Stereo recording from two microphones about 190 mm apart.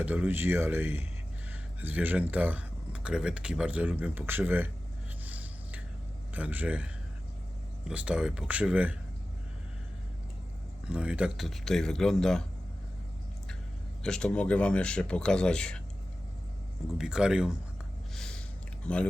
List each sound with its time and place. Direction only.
0.0 s speech: 10° right (ahead or behind)
5.2 s a sound: 10° right (ahead or behind)
6.3 s speech: 10° right (ahead or behind)
10.8 s speech: 5° right (ahead or behind)
14.0 s speech: 5° left (ahead or behind)
17.0 s speech: 5° right (ahead or behind)
18.1 s a sound: 5° left (ahead or behind)